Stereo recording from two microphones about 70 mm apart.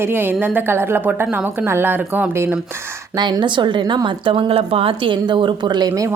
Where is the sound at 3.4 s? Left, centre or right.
Right.